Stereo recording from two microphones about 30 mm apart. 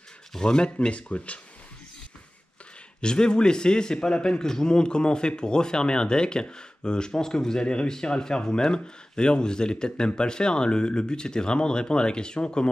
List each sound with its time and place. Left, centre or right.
0.4 s a man's voice: left
0.7 s speech: left
3.0 s a man's voice: left